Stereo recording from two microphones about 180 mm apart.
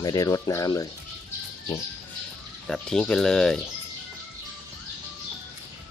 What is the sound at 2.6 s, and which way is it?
Speech, 5° left (ahead or behind).